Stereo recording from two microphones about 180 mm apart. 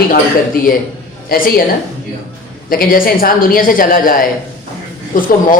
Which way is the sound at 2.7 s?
50° left (ahead or behind).